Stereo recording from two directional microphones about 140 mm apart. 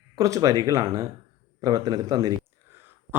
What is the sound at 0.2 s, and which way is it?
Speech, 25° right (ahead or behind).